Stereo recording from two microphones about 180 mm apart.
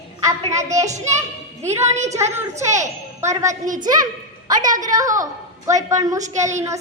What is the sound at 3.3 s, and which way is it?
Speech, 15° right (ahead or behind).